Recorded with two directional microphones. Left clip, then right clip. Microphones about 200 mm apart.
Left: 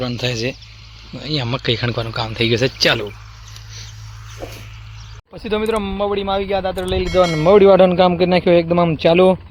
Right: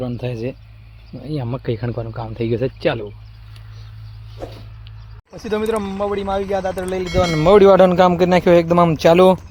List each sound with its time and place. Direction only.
0.0 s speech: centre (ahead or behind)
5.3 s speech: 15° left (ahead or behind)
7.0 s speech: centre (ahead or behind)